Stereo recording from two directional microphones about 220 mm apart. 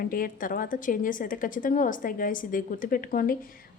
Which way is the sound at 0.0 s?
40° left (ahead or behind).